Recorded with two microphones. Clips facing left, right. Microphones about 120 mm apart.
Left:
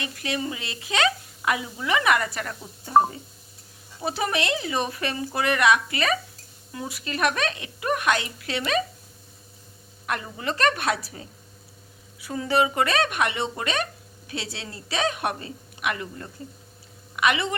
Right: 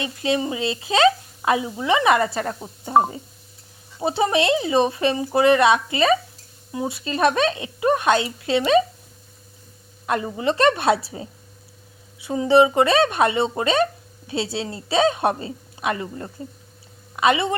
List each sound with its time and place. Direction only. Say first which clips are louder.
0.0 s speech: right 7 dB; 25° right (ahead or behind)
4.0 s speech: right 7 dB; 25° right (ahead or behind)
10.1 s speech: right 7 dB; 25° right (ahead or behind)